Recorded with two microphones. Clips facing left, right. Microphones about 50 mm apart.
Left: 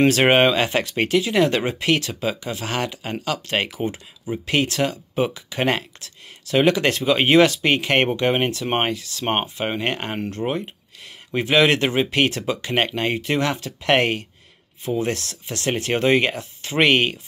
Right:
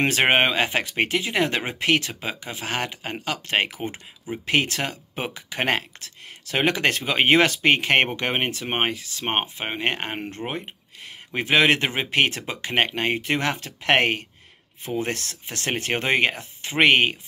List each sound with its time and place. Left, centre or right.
0.0 s speech: right